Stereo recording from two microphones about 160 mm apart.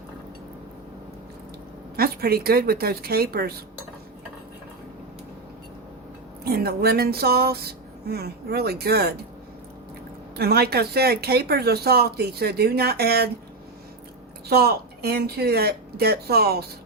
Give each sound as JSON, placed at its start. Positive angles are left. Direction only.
{"t": 2.0, "sound": "a woman's voice", "side_deg": -70}
{"t": 6.4, "sound": "speech", "side_deg": -75}
{"t": 10.3, "sound": "speech", "side_deg": -80}
{"t": 14.5, "sound": "speech", "side_deg": -80}